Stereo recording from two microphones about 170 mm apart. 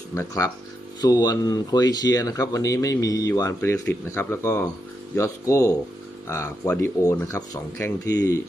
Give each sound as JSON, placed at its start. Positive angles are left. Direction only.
{"t": 0.1, "sound": "speech", "side_deg": 20}